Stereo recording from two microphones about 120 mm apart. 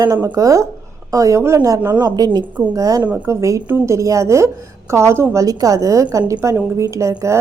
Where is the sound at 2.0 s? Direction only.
35° right (ahead or behind).